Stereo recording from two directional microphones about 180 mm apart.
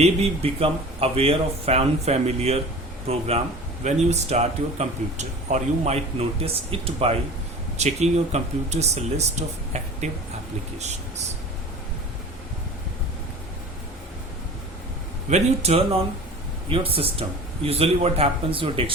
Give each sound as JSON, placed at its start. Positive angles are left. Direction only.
{"t": 0.0, "sound": "speech", "side_deg": -35}
{"t": 15.3, "sound": "speech", "side_deg": -35}